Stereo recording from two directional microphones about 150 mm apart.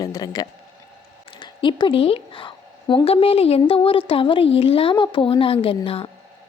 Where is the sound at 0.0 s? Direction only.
25° left (ahead or behind).